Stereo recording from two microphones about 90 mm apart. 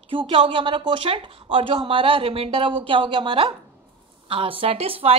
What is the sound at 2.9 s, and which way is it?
Speech, 65° right (ahead or behind).